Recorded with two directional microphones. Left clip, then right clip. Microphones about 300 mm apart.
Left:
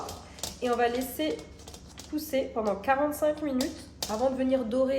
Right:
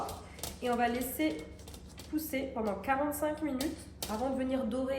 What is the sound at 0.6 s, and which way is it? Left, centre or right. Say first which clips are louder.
A woman's voice: left 5 dB; left.